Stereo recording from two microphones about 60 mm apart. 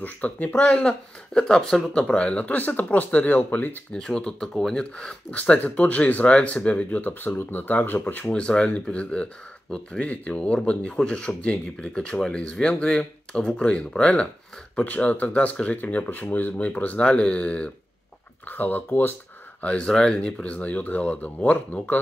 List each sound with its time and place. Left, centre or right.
0.0 s speech: left
0.7 s speech: centre; by 3.7 s left
3.9 s speech: centre
5.3 s speech: left
8.3 s speech: centre
17.0 s speech: centre
18.5 s speech: left
19.6 s speech: left